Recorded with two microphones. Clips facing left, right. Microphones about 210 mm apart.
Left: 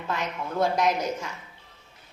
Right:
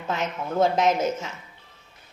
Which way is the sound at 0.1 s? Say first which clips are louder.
Right 3 dB; 20° right (ahead or behind).